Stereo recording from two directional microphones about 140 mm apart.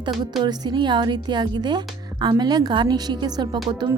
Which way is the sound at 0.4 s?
30° right (ahead or behind).